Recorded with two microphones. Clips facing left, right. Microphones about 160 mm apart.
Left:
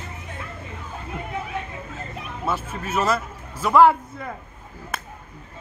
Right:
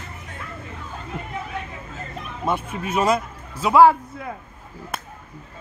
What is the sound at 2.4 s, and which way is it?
A man's voice, 15° right (ahead or behind).